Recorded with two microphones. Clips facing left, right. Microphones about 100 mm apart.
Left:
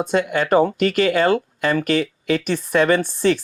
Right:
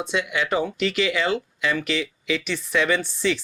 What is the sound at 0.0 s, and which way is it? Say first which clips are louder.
Speech: left 6 dB; 45° left (ahead or behind).